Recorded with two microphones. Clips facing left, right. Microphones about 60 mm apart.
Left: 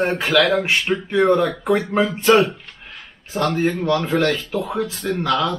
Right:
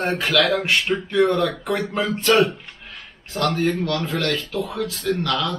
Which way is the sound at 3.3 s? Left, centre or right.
Centre.